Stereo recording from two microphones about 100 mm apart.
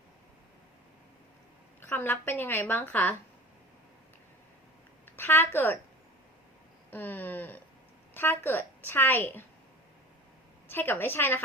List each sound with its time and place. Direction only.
1.8 s a woman's voice: 20° left (ahead or behind)
5.1 s a woman's voice: 20° left (ahead or behind)
6.9 s a woman's voice: 20° left (ahead or behind)
10.7 s a woman's voice: 20° left (ahead or behind)